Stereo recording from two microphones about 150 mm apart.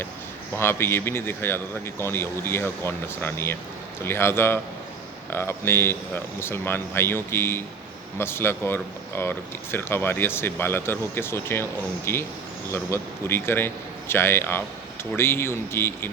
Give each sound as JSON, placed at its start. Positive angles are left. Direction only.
{"t": 0.5, "sound": "a man's voice", "side_deg": 15}